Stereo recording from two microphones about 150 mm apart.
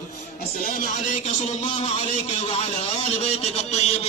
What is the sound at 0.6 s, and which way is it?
A man's voice, 65° left (ahead or behind).